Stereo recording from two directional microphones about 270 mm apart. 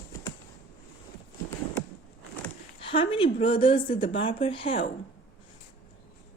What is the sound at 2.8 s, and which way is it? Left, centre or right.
A woman's voice, centre.